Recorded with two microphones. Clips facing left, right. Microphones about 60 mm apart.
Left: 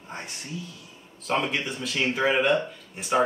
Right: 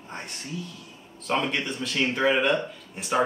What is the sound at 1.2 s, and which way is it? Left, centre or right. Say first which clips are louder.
Speech: even; centre.